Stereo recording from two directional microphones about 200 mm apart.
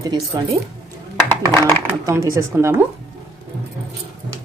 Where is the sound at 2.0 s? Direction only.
15° right (ahead or behind).